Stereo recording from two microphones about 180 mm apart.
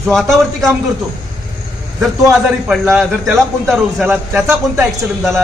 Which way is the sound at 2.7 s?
10° right (ahead or behind).